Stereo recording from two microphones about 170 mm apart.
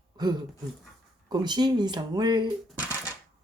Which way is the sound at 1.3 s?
25° right (ahead or behind).